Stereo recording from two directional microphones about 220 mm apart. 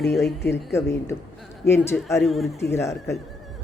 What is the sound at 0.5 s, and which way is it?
A woman's voice, 15° left (ahead or behind).